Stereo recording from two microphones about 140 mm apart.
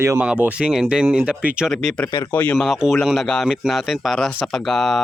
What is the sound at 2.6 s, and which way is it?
Speech, centre (ahead or behind).